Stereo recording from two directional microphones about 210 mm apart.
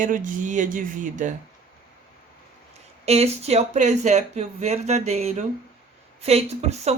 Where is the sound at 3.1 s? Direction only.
30° right (ahead or behind).